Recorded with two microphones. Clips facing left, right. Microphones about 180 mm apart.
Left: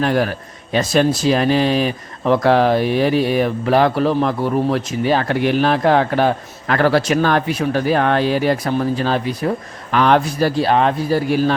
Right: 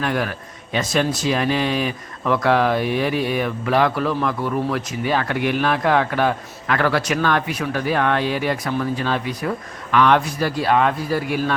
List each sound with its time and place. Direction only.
0.0 s a man's voice: 35° left (ahead or behind)